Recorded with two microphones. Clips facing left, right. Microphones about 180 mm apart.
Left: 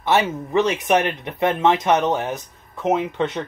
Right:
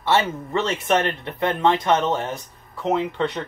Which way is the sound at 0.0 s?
20° left (ahead or behind).